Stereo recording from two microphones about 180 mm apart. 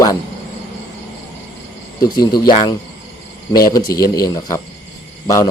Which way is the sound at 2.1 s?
20° left (ahead or behind).